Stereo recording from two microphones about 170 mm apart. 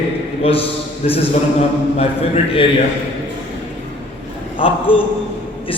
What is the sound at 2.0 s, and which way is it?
Speech, 35° left (ahead or behind).